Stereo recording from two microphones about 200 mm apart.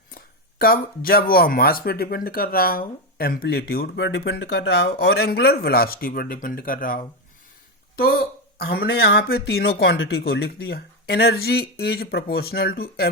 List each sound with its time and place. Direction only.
0.6 s speech: 50° left (ahead or behind)
8.5 s speech: 50° left (ahead or behind)